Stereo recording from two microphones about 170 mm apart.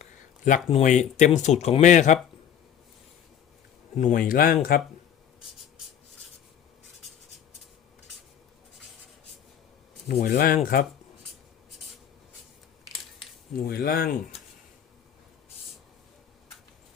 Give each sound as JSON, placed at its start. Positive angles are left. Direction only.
{"t": 0.0, "sound": "a sound", "side_deg": 50}
{"t": 0.7, "sound": "speech", "side_deg": 45}
{"t": 3.9, "sound": "speech", "side_deg": 50}
{"t": 10.2, "sound": "speech", "side_deg": 60}
{"t": 13.7, "sound": "speech", "side_deg": 65}